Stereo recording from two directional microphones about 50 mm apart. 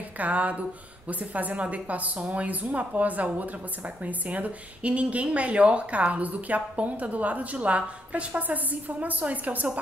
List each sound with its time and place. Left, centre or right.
0.2 s a woman's voice: right
2.1 s speech: centre
2.4 s a woman's voice: right